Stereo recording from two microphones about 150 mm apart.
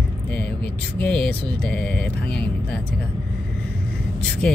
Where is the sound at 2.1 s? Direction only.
90° left.